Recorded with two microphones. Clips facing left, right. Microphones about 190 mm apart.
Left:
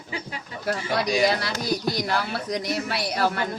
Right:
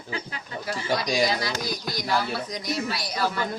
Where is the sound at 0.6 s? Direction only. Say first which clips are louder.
Left 2 dB; 60° left (ahead or behind).